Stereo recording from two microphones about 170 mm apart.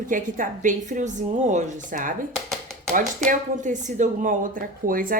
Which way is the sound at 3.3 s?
45° right (ahead or behind).